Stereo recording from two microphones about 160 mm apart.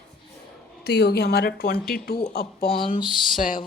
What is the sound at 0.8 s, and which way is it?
Speech, 90° left.